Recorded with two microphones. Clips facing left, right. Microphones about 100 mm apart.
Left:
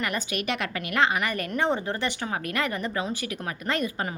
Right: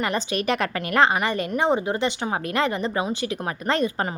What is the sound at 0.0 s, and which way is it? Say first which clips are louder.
A woman's voice: right 5 dB; 30° right (ahead or behind).